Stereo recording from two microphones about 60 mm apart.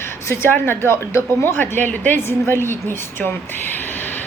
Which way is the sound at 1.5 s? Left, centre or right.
Left.